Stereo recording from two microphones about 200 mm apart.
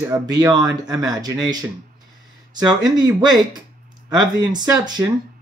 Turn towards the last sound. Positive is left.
turn(degrees=-20)  # may be behind; listen again after turning